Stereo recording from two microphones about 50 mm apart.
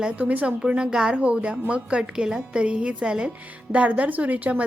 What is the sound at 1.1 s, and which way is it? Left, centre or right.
A woman's voice, right.